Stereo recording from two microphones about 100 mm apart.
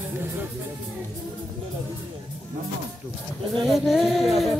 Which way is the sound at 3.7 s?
5° right (ahead or behind).